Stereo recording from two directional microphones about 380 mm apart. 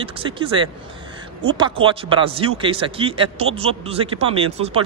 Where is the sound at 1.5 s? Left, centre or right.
Centre.